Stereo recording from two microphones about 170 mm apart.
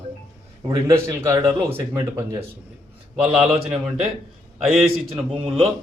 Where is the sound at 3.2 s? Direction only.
Centre (ahead or behind).